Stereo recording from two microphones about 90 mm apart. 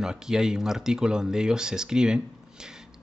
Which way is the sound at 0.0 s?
5° right (ahead or behind).